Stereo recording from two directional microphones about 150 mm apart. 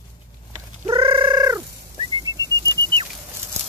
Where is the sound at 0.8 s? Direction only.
35° right (ahead or behind).